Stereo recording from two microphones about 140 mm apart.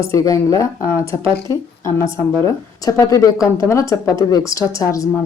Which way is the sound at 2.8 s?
25° left (ahead or behind).